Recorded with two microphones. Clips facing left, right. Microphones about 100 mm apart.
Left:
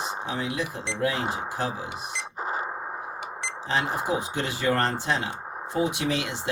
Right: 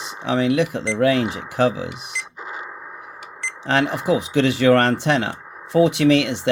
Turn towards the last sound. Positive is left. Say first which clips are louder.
# right 11 dB
turn(degrees=-80)